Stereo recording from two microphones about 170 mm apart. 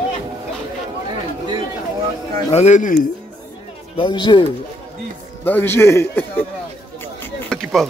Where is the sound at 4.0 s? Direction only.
30° left (ahead or behind).